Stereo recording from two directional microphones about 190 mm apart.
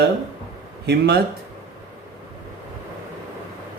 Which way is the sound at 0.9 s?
60° right (ahead or behind).